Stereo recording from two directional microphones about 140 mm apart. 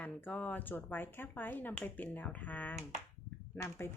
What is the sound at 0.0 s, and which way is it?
Speech, 10° left (ahead or behind).